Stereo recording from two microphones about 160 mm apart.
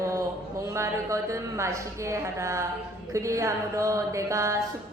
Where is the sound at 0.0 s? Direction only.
20° right (ahead or behind).